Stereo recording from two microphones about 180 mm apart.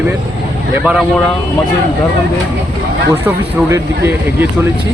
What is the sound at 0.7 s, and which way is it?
Speech, 5° right (ahead or behind).